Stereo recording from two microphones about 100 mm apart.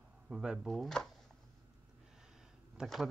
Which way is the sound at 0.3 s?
5° right (ahead or behind).